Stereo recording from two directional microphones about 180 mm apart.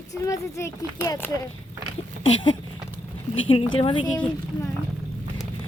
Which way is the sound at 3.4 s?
30° left (ahead or behind).